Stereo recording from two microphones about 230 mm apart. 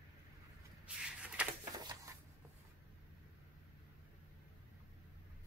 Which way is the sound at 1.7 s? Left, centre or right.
Centre.